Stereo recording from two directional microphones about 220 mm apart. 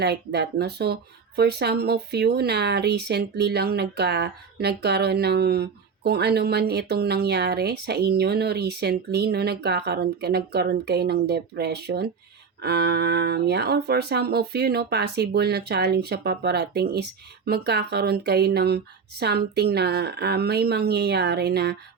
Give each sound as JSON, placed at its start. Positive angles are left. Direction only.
{"t": 0.0, "sound": "speech", "side_deg": -50}